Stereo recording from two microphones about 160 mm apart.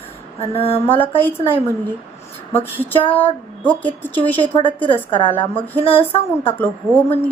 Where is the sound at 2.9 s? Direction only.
30° left (ahead or behind).